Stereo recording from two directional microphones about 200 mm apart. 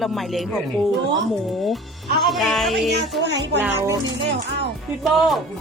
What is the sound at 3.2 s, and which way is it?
Speech, 60° right (ahead or behind).